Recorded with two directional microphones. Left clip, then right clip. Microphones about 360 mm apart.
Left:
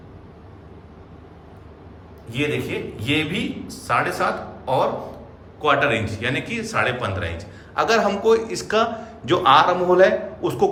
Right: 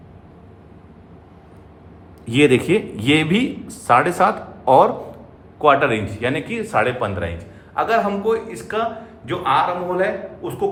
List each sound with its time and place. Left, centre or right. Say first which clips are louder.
2.3 s a man's voice: right 9 dB; centre